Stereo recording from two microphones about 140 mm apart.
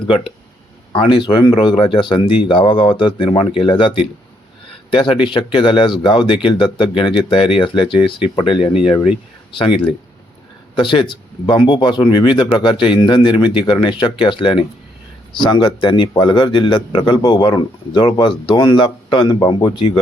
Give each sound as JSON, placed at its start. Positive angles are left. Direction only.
{"t": 0.9, "sound": "a man's voice", "side_deg": 35}